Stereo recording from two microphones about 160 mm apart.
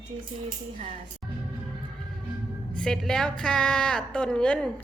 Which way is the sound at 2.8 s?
5° left (ahead or behind).